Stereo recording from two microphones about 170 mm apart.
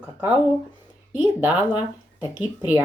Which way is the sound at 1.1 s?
10° right (ahead or behind).